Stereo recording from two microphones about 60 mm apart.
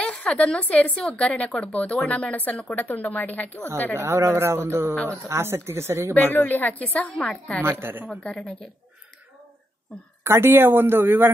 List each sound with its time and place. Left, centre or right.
0.0 s a woman's voice: centre
3.9 s speech: right
4.9 s speech: left
5.2 s speech: right
6.3 s speech: left
7.1 s a woman's voice: centre
7.8 s speech: right
10.2 s speech: right